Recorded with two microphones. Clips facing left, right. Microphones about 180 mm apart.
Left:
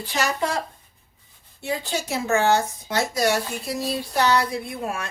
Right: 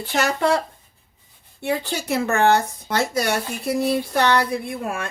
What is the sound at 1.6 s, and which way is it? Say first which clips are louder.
Speech: right 3 dB; 60° right (ahead or behind).